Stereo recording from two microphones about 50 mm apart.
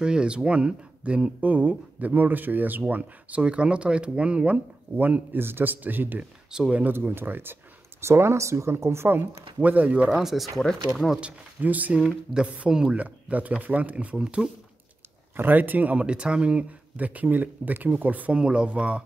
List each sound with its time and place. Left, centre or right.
0.0 s speech: centre
4.9 s speech: right
6.5 s speech: centre
6.9 s speech: right
8.0 s speech: right
9.6 s speech: right
10.0 s speech: centre
10.6 s speech: centre
11.1 s speech: right
15.3 s speech: right
16.1 s speech: centre
18.4 s speech: right